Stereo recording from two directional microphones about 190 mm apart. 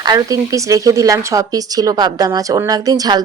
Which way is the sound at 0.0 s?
20° right (ahead or behind).